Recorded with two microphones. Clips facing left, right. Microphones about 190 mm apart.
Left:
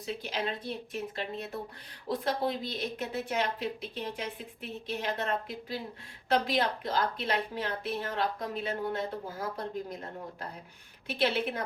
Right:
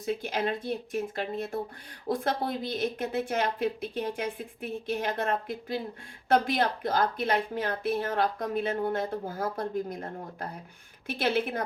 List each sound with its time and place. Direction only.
0.0 s speech: 50° right (ahead or behind)